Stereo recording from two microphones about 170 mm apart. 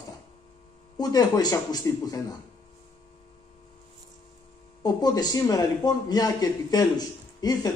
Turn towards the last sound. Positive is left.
turn(degrees=25)  # may be behind; listen again after turning